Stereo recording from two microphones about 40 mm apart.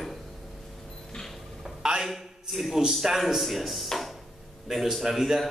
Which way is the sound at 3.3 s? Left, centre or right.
Centre.